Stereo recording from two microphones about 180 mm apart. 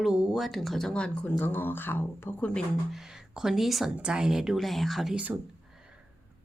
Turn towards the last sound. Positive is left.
turn(degrees=-5)  # may be behind; listen again after turning